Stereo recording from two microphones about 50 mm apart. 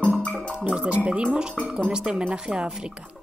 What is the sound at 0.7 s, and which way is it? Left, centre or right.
Speech, right.